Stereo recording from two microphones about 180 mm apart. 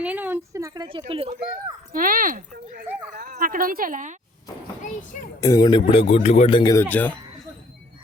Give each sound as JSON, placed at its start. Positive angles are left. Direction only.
{"t": 0.0, "sound": "speech", "side_deg": -10}
{"t": 1.9, "sound": "speech", "side_deg": -50}
{"t": 5.4, "sound": "speech", "side_deg": 20}
{"t": 6.6, "sound": "speech", "side_deg": 20}
{"t": 6.8, "sound": "speech", "side_deg": 10}